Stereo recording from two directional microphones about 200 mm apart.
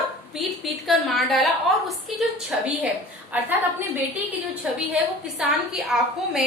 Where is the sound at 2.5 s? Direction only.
Centre (ahead or behind).